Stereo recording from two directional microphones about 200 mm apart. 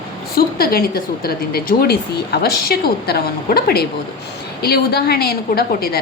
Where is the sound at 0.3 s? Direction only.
50° left (ahead or behind).